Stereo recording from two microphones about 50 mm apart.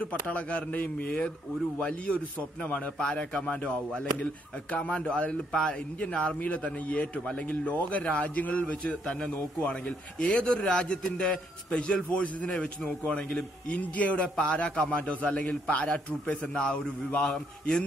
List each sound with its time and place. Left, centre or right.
0.0 s a man's voice: left
8.8 s a man's voice: centre
9.7 s a man's voice: left
13.7 s a man's voice: left